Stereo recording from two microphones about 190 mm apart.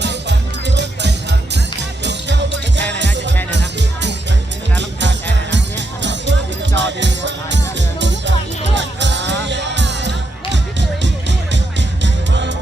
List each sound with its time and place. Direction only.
0.0 s music: 65° right (ahead or behind)